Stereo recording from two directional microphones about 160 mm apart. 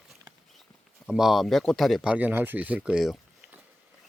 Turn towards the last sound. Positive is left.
turn(degrees=-5)  # may be behind; listen again after turning